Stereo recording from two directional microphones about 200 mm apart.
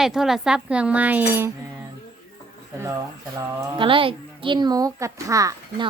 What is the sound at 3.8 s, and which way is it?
A child's voice, 25° right (ahead or behind).